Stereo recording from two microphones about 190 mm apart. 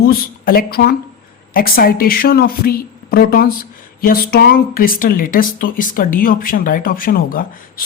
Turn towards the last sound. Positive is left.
turn(degrees=50)  # may be behind; listen again after turning